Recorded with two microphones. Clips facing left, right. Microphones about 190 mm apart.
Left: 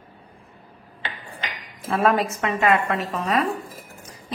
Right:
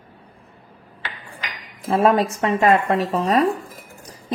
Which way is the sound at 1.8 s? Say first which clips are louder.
Right 4 dB; 30° right (ahead or behind).